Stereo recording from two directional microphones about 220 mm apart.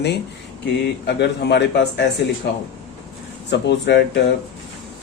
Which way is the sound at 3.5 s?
50° left (ahead or behind).